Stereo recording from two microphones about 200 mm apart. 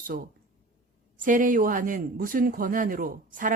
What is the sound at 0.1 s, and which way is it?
A woman's voice, 45° right (ahead or behind).